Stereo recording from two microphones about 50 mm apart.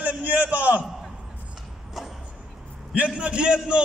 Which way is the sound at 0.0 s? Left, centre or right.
Right.